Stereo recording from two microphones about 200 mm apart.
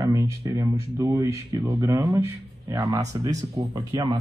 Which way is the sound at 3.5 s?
30° right (ahead or behind).